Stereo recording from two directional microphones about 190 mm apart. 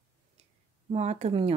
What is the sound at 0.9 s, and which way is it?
Speech, 35° right (ahead or behind).